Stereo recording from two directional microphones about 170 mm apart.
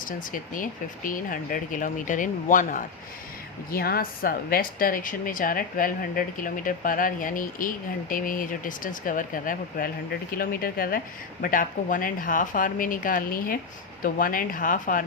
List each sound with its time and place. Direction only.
0.0 s speech: 50° left (ahead or behind)
3.7 s a woman's voice: 60° left (ahead or behind)